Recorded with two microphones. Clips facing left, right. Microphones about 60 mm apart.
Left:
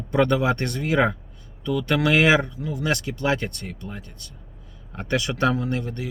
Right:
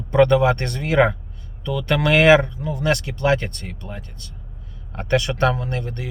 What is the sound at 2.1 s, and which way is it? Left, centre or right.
Speech, right.